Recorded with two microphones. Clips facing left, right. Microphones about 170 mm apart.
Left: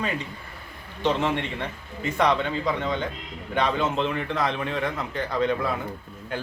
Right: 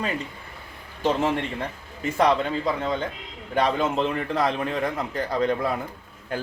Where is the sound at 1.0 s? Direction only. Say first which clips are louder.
Right 1 dB; 40° right (ahead or behind).